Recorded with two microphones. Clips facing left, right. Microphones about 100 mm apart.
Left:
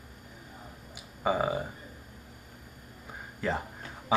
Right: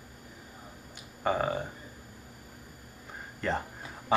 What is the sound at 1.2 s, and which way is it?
Speech, 5° left (ahead or behind).